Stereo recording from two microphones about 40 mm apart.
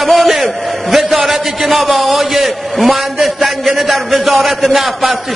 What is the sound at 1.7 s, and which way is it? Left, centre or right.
A man's voice, centre.